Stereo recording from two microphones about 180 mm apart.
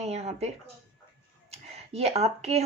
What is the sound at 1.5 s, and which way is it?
Speech, 35° right (ahead or behind).